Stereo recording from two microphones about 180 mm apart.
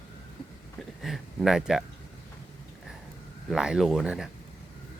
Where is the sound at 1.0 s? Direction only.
Centre (ahead or behind).